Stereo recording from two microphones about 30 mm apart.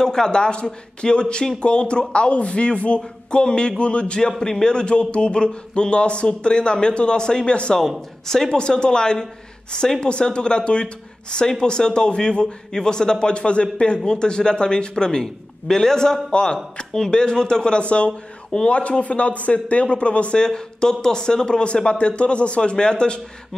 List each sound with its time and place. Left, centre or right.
0.0 s a man's voice: left
4.4 s a man's voice: left
8.3 s speech: centre
8.5 s a man's voice: left
17.7 s speech: left
20.3 s speech: left